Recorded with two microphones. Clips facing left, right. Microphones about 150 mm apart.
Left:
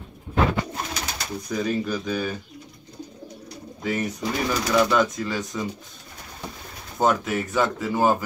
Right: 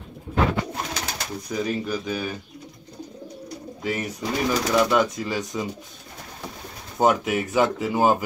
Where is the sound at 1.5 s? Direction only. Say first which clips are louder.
Left 1 dB; 5° right (ahead or behind).